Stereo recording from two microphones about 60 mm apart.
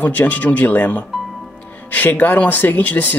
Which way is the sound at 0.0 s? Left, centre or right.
Left.